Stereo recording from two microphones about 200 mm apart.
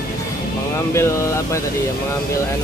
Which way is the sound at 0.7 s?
15° left (ahead or behind).